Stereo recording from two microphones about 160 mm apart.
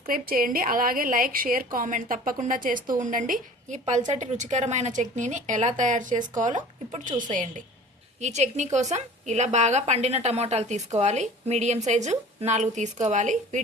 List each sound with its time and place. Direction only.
0.1 s a woman's voice: 65° right (ahead or behind)